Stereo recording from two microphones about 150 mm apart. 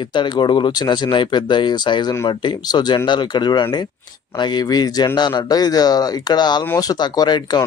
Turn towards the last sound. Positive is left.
turn(degrees=30)  # may be behind; listen again after turning